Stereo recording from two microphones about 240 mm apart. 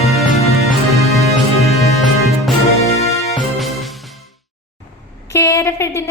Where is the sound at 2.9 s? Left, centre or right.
Left.